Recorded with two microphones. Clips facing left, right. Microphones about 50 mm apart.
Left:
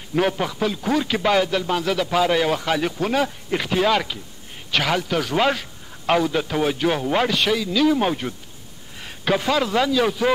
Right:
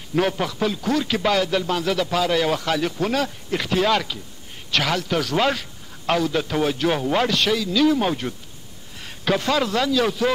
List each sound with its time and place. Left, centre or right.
0.1 s a man's voice: centre